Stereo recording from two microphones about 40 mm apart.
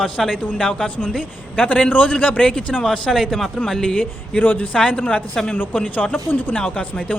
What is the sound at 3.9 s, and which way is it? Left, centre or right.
Speech, left.